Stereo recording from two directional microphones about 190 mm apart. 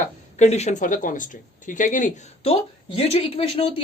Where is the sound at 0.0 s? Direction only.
35° left (ahead or behind).